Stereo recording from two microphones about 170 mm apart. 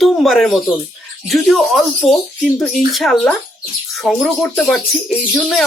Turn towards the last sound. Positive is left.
turn(degrees=5)  # may be behind; listen again after turning